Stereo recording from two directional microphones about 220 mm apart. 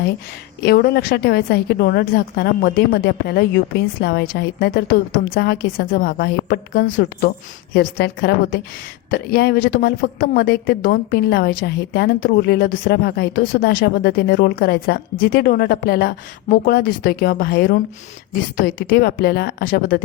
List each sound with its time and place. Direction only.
0.6 s a woman's voice: 45° left (ahead or behind)